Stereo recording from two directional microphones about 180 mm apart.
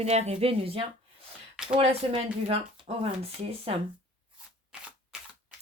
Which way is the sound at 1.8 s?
35° right (ahead or behind).